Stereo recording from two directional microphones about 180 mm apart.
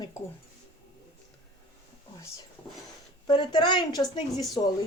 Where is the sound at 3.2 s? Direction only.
25° left (ahead or behind).